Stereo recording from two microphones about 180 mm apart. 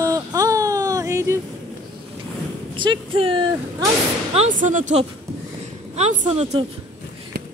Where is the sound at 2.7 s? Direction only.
30° right (ahead or behind).